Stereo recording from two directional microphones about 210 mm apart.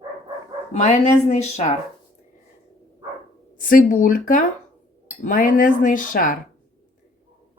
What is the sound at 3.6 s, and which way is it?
Speech, 40° left (ahead or behind).